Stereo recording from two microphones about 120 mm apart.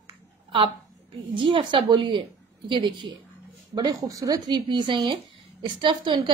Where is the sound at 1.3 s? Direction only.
45° right (ahead or behind).